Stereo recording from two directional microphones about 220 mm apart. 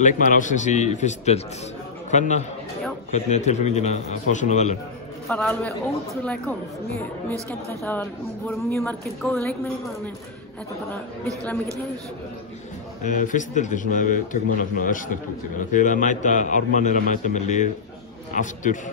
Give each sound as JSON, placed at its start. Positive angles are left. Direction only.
{"t": 0.0, "sound": "a man's voice", "side_deg": 35}
{"t": 5.3, "sound": "a woman's voice", "side_deg": 5}
{"t": 7.8, "sound": "a woman's voice", "side_deg": 10}
{"t": 10.9, "sound": "speech", "side_deg": 5}
{"t": 13.0, "sound": "speech", "side_deg": 35}